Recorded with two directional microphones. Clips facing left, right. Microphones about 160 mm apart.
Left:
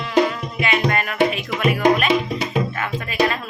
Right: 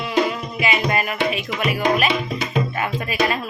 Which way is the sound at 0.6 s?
5° right (ahead or behind).